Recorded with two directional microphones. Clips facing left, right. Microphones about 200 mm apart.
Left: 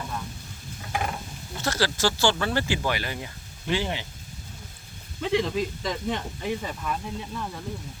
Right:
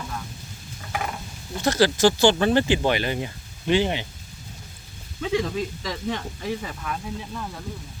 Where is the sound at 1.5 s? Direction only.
20° right (ahead or behind).